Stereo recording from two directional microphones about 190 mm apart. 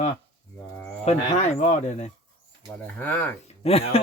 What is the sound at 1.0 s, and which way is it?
Speech, 35° left (ahead or behind).